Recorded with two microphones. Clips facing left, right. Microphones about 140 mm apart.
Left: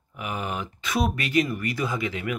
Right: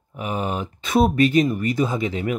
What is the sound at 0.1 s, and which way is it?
Speech, 30° right (ahead or behind).